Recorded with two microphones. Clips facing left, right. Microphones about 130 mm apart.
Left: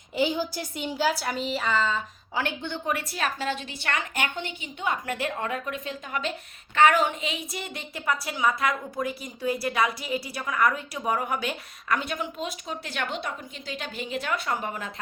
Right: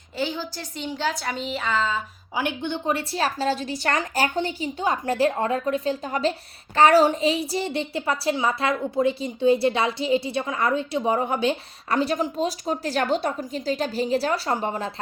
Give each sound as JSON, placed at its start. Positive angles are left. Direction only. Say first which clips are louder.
{"t": 0.2, "sound": "a woman's voice", "louder": "left 2 dB", "side_deg": 15}
{"t": 2.3, "sound": "a woman's voice", "louder": "right 4 dB", "side_deg": -15}